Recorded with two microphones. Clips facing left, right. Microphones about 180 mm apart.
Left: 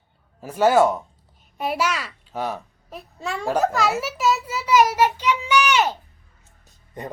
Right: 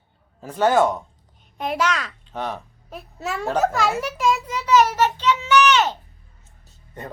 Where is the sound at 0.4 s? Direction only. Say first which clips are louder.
Left 1 dB; 10° left (ahead or behind).